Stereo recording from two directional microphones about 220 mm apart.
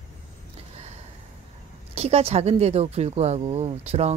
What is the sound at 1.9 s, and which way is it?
Speech, 30° right (ahead or behind).